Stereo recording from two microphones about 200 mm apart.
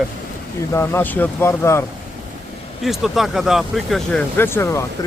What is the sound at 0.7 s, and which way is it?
Speech, 10° left (ahead or behind).